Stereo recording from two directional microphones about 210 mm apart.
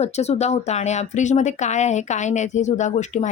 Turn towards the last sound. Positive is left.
turn(degrees=35)  # may be behind; listen again after turning